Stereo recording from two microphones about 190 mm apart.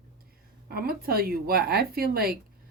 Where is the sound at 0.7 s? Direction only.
50° right (ahead or behind).